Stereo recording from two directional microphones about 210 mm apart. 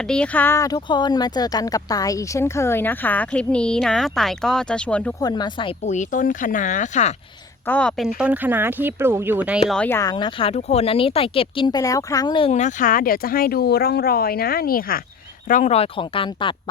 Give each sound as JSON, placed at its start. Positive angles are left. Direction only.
{"t": 0.1, "sound": "speech", "side_deg": 5}
{"t": 5.2, "sound": "speech", "side_deg": 20}
{"t": 5.8, "sound": "speech", "side_deg": 35}
{"t": 7.7, "sound": "speech", "side_deg": 5}
{"t": 9.6, "sound": "speech", "side_deg": 5}